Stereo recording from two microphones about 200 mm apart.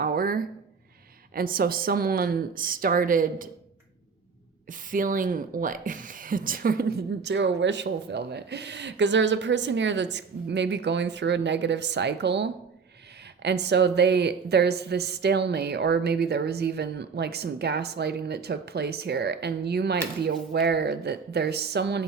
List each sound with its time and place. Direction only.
0.0 s a sound: 45° right (ahead or behind)
1.3 s a woman's voice: 45° right (ahead or behind)
4.7 s a woman's voice: 40° right (ahead or behind)